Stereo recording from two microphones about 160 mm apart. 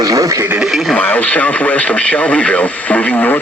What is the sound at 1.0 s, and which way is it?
Speech, 10° left (ahead or behind).